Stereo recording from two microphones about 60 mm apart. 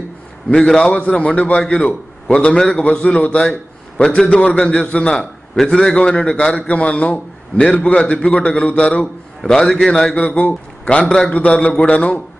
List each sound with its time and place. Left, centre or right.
0.5 s a man's voice: centre
9.4 s a man's voice: centre
10.2 s a man's voice: left